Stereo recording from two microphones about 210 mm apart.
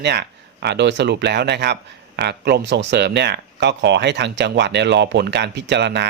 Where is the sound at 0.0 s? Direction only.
50° right (ahead or behind).